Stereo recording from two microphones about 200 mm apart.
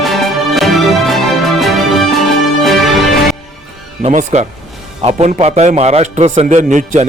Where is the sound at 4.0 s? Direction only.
35° right (ahead or behind).